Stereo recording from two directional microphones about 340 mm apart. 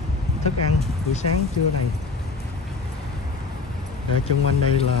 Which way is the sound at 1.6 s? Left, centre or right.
Left.